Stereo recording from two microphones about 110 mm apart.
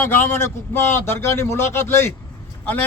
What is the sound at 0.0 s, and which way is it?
Speech, 20° left (ahead or behind).